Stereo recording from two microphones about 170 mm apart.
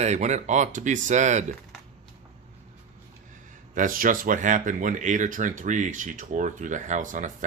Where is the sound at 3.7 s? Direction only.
50° right (ahead or behind).